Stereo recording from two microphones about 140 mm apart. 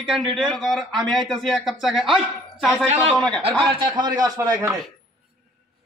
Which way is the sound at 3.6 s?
35° right (ahead or behind).